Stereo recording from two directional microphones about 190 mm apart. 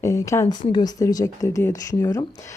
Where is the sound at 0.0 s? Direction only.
15° left (ahead or behind).